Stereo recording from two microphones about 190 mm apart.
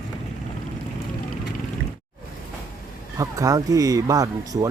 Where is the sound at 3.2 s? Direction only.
15° right (ahead or behind).